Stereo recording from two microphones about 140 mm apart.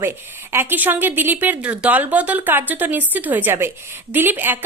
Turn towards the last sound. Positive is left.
turn(degrees=-15)  # may be behind; listen again after turning